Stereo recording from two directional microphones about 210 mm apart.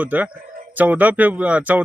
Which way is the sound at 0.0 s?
5° right (ahead or behind).